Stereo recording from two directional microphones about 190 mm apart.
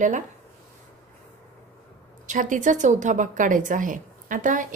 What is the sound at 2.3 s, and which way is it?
A woman's voice, 40° right (ahead or behind).